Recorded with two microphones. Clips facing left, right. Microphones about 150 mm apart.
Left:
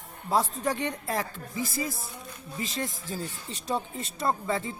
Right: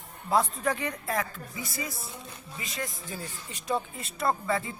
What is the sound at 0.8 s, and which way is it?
Speech, 30° left (ahead or behind).